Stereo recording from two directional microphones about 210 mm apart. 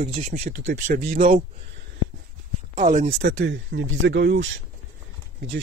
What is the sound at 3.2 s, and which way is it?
Speech, 60° right (ahead or behind).